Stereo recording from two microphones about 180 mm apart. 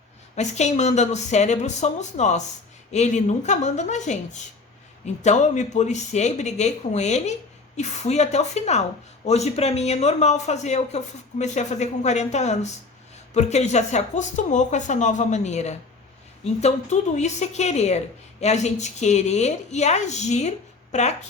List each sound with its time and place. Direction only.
0.3 s a woman's voice: 40° left (ahead or behind)